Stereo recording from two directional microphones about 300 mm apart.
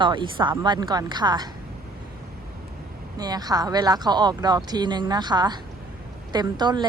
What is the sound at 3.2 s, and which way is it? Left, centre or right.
Speech, centre.